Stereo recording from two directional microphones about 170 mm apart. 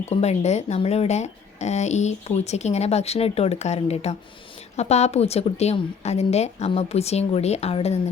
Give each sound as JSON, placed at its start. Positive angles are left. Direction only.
{"t": 0.1, "sound": "speech", "side_deg": 40}